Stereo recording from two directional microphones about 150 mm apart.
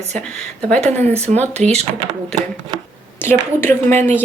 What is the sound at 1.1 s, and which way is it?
Speech, 45° right (ahead or behind).